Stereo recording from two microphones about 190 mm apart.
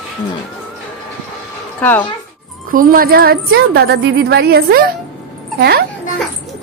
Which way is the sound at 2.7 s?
50° right (ahead or behind).